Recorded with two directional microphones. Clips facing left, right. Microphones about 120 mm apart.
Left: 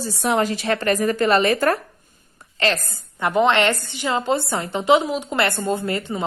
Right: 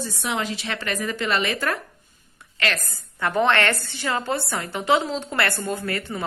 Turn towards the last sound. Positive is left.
turn(degrees=20)  # may be behind; listen again after turning